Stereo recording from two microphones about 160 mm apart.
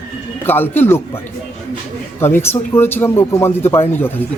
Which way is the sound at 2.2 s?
15° left (ahead or behind).